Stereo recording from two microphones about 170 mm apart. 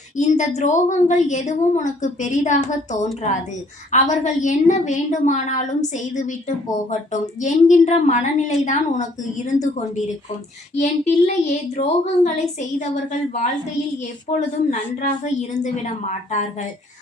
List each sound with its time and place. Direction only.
0.2 s a woman's voice: 45° left (ahead or behind)
14.3 s a woman's voice: 45° left (ahead or behind)